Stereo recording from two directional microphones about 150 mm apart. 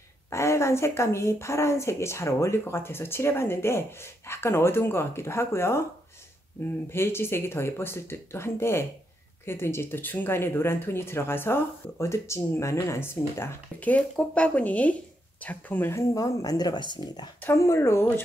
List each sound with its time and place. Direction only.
0.3 s speech: 20° left (ahead or behind)
6.9 s speech: 15° left (ahead or behind)
17.4 s speech: 15° left (ahead or behind)